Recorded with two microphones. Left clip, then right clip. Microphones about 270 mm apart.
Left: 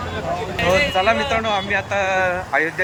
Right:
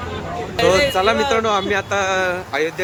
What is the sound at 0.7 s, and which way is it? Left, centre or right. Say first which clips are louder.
Speech: right 1 dB; centre.